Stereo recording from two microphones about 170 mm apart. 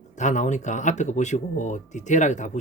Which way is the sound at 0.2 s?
45° left (ahead or behind).